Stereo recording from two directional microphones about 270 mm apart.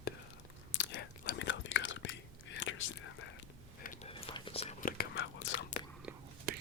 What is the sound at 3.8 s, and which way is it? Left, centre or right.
Whispering, left.